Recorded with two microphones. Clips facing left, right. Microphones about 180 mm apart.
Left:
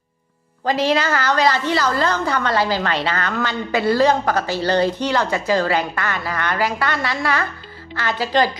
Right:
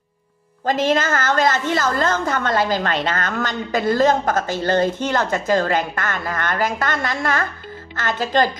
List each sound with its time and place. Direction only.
0.7 s a woman's voice: 45° right (ahead or behind)